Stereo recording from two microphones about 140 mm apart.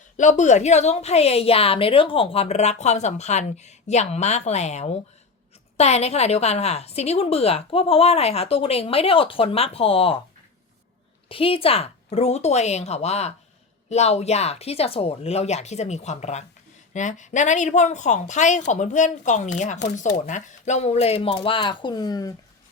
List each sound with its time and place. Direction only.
0.2 s a woman's voice: 60° left (ahead or behind); by 10.2 s 40° left (ahead or behind)
11.3 s a woman's voice: 40° left (ahead or behind)